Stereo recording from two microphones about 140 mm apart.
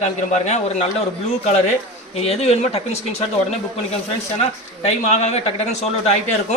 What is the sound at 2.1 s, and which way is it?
A man's voice, 45° left (ahead or behind).